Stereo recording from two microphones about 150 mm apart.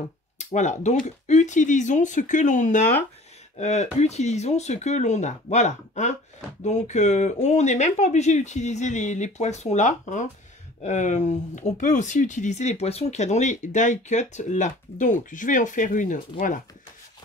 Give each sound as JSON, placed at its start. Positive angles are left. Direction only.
{"t": 0.4, "sound": "speech", "side_deg": 55}